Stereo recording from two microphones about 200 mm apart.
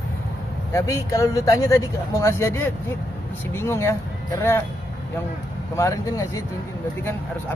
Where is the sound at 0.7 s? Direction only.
15° left (ahead or behind).